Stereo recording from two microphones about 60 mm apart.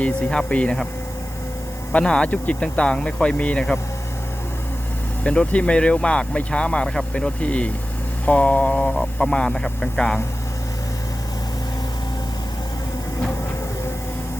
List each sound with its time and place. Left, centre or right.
0.5 s speech: centre
1.9 s speech: centre
5.2 s speech: centre